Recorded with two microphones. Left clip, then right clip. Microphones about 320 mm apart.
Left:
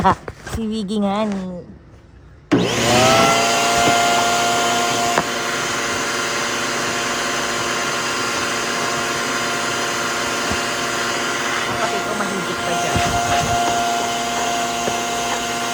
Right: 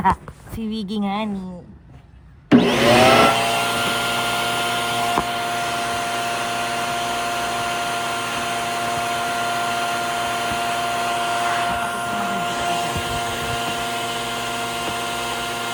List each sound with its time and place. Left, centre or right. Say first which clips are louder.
2.5 s vacuum cleaner: right 2 dB; right